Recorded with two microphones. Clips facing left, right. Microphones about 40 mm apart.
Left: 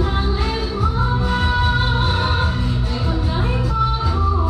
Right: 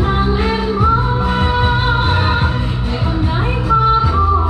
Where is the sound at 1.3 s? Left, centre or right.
Right.